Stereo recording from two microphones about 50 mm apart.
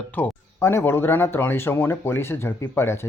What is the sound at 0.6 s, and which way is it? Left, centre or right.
Speech, left.